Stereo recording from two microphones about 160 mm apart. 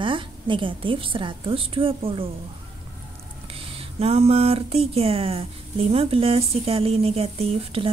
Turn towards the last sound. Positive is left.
turn(degrees=-35)  # may be behind; listen again after turning